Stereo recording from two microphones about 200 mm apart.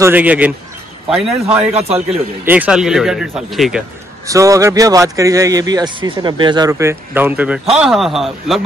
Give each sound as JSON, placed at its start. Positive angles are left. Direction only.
{"t": 0.0, "sound": "a man's voice", "side_deg": -10}
{"t": 1.7, "sound": "a man's voice", "side_deg": -30}
{"t": 2.4, "sound": "speech", "side_deg": -10}
{"t": 4.3, "sound": "a man's voice", "side_deg": -15}